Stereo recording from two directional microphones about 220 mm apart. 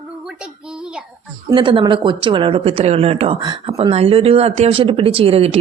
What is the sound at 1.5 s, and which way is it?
A woman's voice, 20° right (ahead or behind).